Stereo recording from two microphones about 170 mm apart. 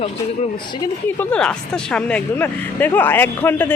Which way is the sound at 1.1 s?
10° left (ahead or behind).